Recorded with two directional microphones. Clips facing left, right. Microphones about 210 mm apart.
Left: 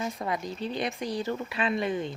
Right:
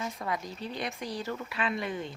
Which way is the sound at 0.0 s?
25° left (ahead or behind).